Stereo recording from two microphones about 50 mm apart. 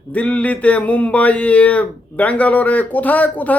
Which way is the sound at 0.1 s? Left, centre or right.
Left.